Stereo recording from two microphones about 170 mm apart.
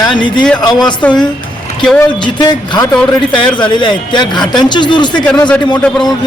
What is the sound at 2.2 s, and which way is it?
Speech, 25° left (ahead or behind).